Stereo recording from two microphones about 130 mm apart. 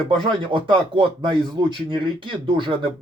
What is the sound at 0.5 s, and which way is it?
Speech, 40° right (ahead or behind).